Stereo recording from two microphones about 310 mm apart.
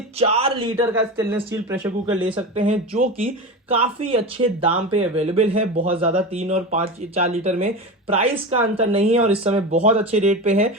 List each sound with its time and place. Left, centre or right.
0.2 s speech: centre
2.9 s speech: right